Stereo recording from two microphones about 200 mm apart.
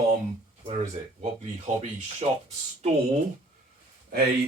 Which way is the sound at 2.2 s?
35° right (ahead or behind).